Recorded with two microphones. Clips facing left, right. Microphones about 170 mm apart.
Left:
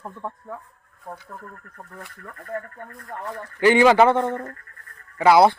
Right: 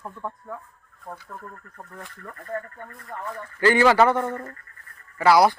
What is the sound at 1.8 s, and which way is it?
Speech, 10° left (ahead or behind).